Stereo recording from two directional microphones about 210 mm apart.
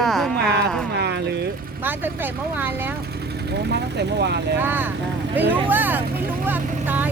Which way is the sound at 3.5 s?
55° right (ahead or behind).